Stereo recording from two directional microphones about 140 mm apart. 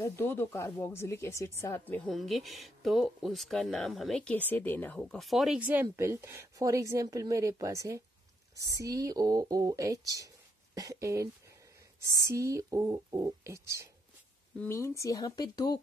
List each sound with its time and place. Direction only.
0.0 s speech: 15° left (ahead or behind)
2.0 s speech: centre (ahead or behind)
5.6 s speech: 10° right (ahead or behind)
14.6 s speech: 20° left (ahead or behind)